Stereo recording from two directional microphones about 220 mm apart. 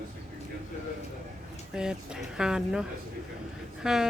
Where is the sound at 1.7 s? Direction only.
5° right (ahead or behind).